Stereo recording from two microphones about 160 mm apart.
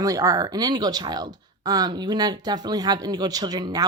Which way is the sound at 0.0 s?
20° right (ahead or behind).